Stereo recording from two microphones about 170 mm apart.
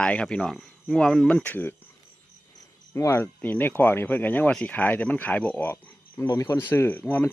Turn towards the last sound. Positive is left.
turn(degrees=10)  # may be behind; listen again after turning